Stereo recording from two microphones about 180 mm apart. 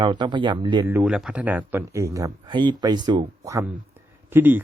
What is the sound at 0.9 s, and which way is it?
Speech, 10° right (ahead or behind).